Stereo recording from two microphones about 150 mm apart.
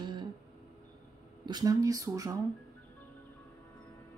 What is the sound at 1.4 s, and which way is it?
Speech, 25° right (ahead or behind).